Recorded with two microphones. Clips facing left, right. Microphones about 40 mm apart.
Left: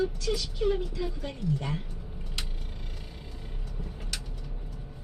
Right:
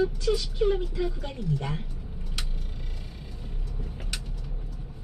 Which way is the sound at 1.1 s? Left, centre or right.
Right.